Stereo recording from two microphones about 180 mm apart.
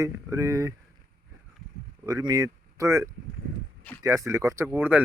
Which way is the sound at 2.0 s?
20° right (ahead or behind).